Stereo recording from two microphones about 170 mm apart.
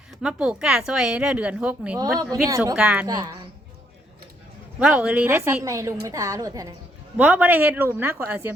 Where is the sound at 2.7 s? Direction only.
10° right (ahead or behind).